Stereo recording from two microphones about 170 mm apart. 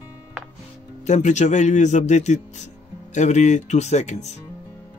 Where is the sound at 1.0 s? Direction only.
45° left (ahead or behind).